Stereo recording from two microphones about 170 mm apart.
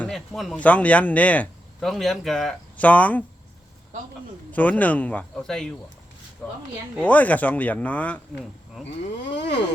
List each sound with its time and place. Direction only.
0.0 s speech: centre (ahead or behind)
4.5 s speech: 10° left (ahead or behind)
7.0 s speech: 10° left (ahead or behind)
9.2 s a sound: 90° left